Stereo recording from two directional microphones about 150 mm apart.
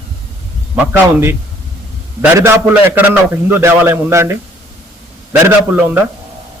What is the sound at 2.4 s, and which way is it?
A man's voice, 15° right (ahead or behind).